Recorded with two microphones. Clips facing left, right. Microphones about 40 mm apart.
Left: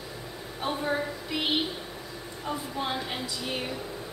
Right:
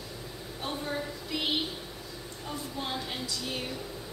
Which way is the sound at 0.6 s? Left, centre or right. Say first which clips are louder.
Left 5 dB; centre.